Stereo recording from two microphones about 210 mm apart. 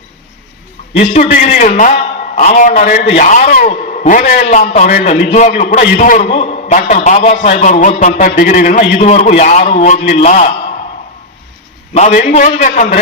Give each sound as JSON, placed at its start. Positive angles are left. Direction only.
{"t": 0.9, "sound": "a man's voice", "side_deg": 35}
{"t": 11.9, "sound": "a man's voice", "side_deg": 35}